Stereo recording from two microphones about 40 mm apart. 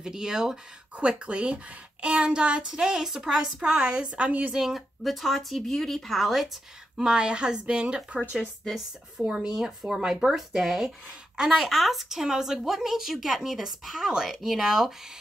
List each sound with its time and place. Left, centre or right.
0.0 s speech: centre
0.9 s a woman's voice: right
2.6 s a woman's voice: centre
4.2 s a woman's voice: right
4.5 s speech: centre
7.0 s a woman's voice: centre
11.5 s speech: centre